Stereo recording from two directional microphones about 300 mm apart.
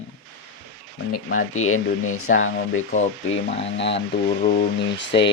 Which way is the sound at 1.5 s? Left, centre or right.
Left.